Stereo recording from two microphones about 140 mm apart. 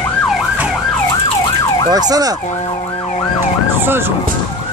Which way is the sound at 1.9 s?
25° right (ahead or behind).